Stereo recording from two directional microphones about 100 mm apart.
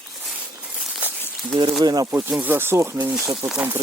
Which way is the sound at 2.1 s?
20° right (ahead or behind).